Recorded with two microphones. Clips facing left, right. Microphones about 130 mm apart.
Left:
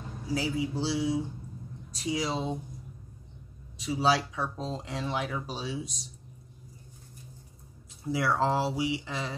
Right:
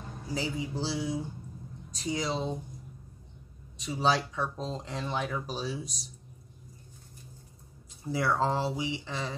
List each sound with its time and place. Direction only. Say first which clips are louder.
0.3 s speech: left 3 dB; 5° left (ahead or behind)
3.7 s speech: left 1 dB; 5° left (ahead or behind)
8.0 s speech: left 1 dB; 5° left (ahead or behind)